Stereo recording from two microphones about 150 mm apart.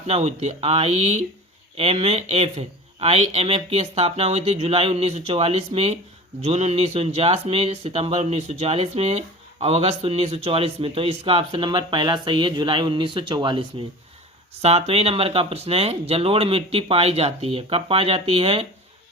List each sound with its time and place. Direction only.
0.1 s speech: 45° right (ahead or behind)
14.6 s speech: 45° right (ahead or behind)